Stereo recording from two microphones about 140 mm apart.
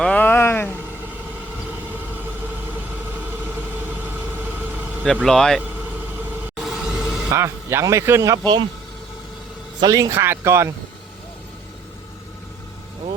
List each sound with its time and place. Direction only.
0.0 s vehicle: 10° left (ahead or behind)
5.2 s speech: 5° left (ahead or behind)
6.6 s music: centre (ahead or behind)
7.3 s speech: 20° right (ahead or behind)
9.8 s speech: 25° right (ahead or behind)